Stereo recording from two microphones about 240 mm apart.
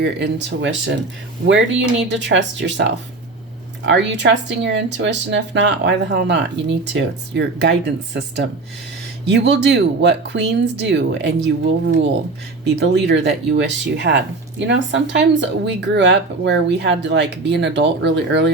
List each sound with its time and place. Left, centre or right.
0.0 s speech: right
3.8 s speech: right
12.6 s speech: right